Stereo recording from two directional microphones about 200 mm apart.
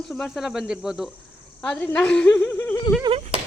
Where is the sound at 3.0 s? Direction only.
30° right (ahead or behind).